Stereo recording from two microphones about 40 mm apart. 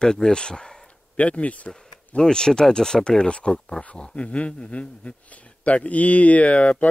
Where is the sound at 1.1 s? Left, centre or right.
Left.